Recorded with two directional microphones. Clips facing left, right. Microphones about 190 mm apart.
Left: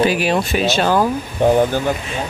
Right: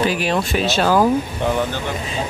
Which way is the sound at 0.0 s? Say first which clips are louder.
Left 3 dB; 10° left (ahead or behind).